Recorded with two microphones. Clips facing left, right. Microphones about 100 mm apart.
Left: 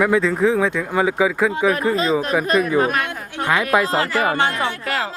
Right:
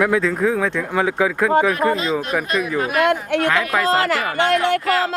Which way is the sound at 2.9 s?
70° right (ahead or behind).